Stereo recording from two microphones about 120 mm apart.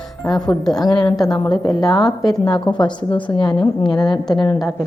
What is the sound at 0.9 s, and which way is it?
Speech, 40° left (ahead or behind).